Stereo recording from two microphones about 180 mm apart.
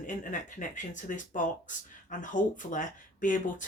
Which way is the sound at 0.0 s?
45° left (ahead or behind).